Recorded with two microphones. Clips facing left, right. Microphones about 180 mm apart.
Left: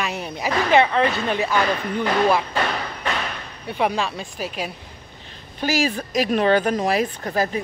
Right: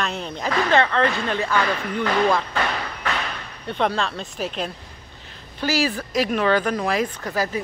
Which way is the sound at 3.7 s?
10° left (ahead or behind).